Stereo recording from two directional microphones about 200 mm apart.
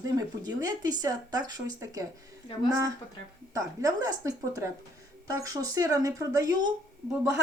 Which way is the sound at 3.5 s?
20° right (ahead or behind).